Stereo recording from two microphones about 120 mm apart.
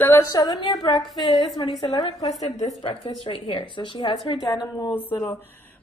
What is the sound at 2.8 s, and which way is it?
A woman's voice, 50° left (ahead or behind).